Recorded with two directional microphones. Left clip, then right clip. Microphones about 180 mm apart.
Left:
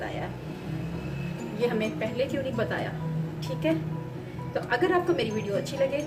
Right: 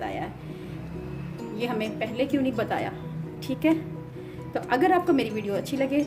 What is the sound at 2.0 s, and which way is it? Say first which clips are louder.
Speech: right 2 dB; 55° right (ahead or behind).